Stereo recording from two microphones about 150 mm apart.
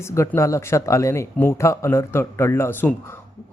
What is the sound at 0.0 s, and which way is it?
A man's voice, 20° left (ahead or behind).